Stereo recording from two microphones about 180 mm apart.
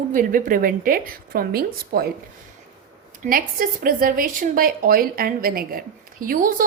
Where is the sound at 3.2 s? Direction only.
50° right (ahead or behind).